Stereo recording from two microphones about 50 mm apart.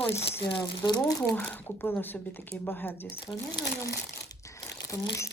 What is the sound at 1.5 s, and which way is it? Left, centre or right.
Speech, left.